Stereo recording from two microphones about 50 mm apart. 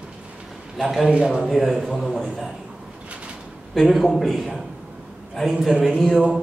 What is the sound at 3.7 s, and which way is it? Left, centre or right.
A man's voice, centre.